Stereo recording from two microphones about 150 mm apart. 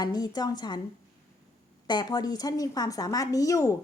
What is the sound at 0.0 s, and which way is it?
Speech, 25° left (ahead or behind).